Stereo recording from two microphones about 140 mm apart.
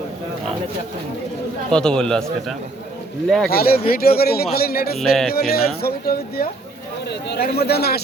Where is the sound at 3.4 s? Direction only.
90° left.